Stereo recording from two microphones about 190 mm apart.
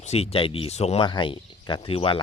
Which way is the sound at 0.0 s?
35° left (ahead or behind).